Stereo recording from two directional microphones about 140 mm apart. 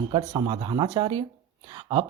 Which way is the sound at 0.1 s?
35° right (ahead or behind).